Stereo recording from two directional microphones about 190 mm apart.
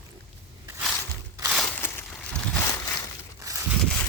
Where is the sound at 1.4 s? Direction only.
5° left (ahead or behind).